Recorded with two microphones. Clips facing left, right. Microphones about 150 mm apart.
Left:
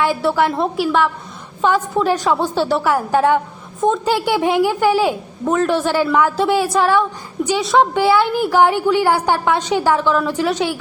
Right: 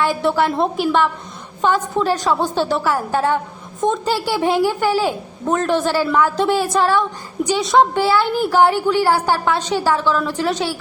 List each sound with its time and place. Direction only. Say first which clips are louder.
0.0 s a woman's voice: left 1 dB; 5° left (ahead or behind)